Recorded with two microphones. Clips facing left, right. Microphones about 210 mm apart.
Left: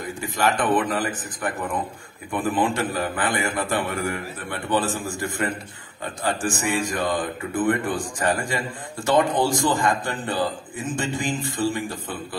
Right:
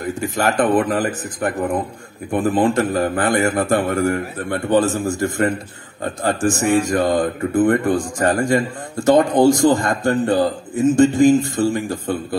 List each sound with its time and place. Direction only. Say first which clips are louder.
0.7 s speech: right 6 dB; 50° right (ahead or behind)